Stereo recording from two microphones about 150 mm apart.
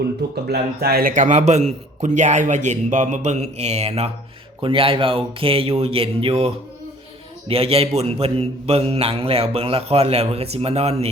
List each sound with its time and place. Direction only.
0.4 s speech: 90° right
1.1 s a man's voice: 55° right (ahead or behind)